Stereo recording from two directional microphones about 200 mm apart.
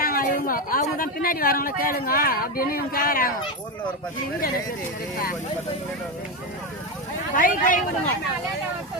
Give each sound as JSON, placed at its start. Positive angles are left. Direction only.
{"t": 0.0, "sound": "speech", "side_deg": 45}
{"t": 5.1, "sound": "speech", "side_deg": 45}
{"t": 7.3, "sound": "speech", "side_deg": 45}